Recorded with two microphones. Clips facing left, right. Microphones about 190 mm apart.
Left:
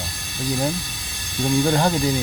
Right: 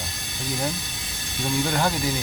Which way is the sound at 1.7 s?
25° left (ahead or behind).